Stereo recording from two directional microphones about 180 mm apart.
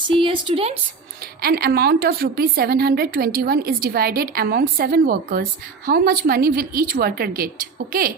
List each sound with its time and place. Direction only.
0.2 s speech: 30° right (ahead or behind)
1.4 s a woman's voice: 60° right (ahead or behind)